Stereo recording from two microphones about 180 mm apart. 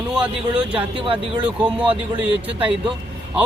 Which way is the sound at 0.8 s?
30° right (ahead or behind).